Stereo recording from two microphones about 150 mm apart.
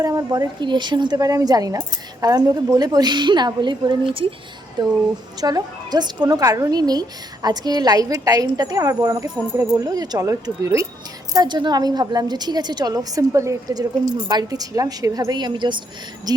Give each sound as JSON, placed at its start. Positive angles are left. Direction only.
{"t": 0.0, "sound": "a woman's voice", "side_deg": -25}